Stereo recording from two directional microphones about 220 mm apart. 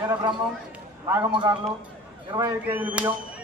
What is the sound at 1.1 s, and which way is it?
A man's voice, 20° right (ahead or behind).